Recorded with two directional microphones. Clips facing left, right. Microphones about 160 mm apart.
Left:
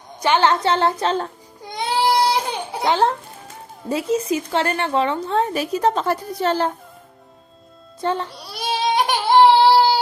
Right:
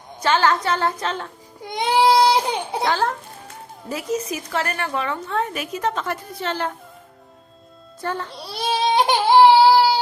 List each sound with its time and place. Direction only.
0.2 s a woman's voice: 15° left (ahead or behind)
1.7 s baby cry: 20° right (ahead or behind)
2.8 s a woman's voice: 20° left (ahead or behind)
8.0 s a woman's voice: 20° left (ahead or behind)
8.5 s baby cry: 25° right (ahead or behind)
9.3 s baby cry: 10° right (ahead or behind)